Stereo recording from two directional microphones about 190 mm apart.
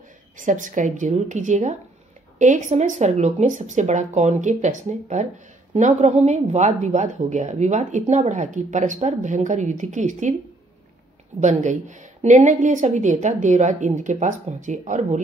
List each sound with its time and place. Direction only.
0.4 s speech: 40° right (ahead or behind)
11.4 s speech: 40° right (ahead or behind)